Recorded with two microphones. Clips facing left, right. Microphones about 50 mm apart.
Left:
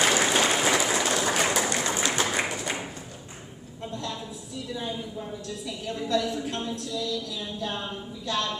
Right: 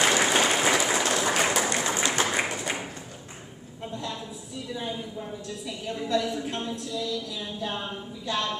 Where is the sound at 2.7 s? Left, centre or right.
Centre.